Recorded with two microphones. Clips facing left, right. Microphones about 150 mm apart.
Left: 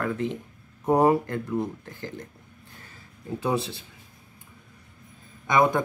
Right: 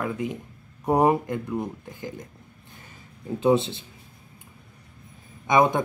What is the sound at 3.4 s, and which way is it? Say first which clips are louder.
Speech: right 7 dB; 20° right (ahead or behind).